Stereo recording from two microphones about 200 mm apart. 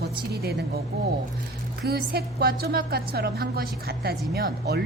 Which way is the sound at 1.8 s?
50° right (ahead or behind).